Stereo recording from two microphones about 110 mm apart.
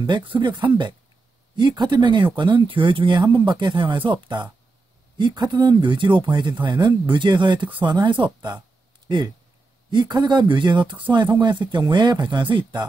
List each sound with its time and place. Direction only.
0.0 s speech: 45° right (ahead or behind)
9.8 s speech: 40° right (ahead or behind)